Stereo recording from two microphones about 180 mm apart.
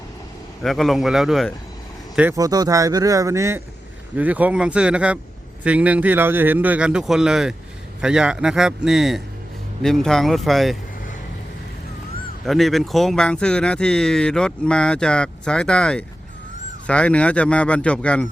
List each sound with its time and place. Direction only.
0.6 s speech: centre (ahead or behind)
2.3 s a man's voice: 20° right (ahead or behind); by 10.8 s centre (ahead or behind)
12.5 s speech: centre (ahead or behind)